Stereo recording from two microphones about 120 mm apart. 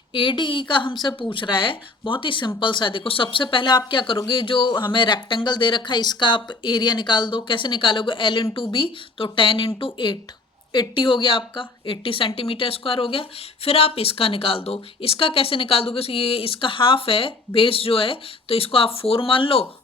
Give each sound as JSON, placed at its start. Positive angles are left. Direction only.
{"t": 0.1, "sound": "speech", "side_deg": 45}